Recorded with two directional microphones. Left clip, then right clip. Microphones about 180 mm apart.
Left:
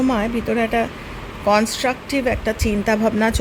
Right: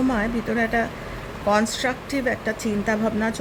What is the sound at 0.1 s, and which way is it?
Speech, 25° left (ahead or behind).